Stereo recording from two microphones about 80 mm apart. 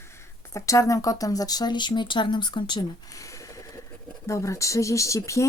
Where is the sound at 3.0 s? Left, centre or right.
Left.